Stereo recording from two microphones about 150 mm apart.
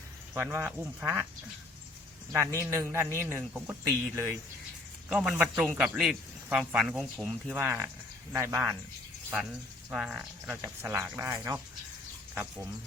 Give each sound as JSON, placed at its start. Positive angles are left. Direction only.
{"t": 0.5, "sound": "a man's voice", "side_deg": -15}
{"t": 2.3, "sound": "a man's voice", "side_deg": -20}
{"t": 7.5, "sound": "a man's voice", "side_deg": -10}
{"t": 9.9, "sound": "a man's voice", "side_deg": -5}